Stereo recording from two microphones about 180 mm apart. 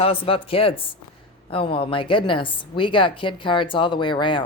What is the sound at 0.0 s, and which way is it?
A woman's voice, 30° left (ahead or behind).